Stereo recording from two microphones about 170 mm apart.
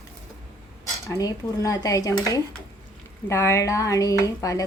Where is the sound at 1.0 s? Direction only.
20° left (ahead or behind).